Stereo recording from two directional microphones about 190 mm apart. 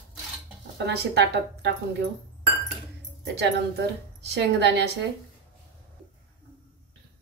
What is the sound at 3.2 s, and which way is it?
A woman's voice, 65° right (ahead or behind).